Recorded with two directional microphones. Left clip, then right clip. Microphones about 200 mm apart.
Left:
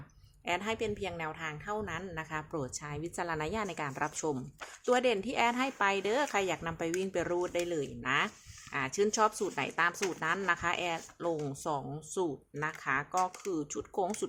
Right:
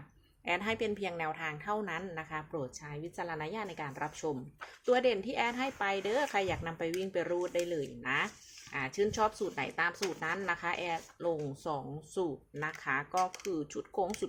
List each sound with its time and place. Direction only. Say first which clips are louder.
0.4 s a woman's voice: even; 5° left (ahead or behind)
2.5 s speech: left 2 dB; 20° left (ahead or behind)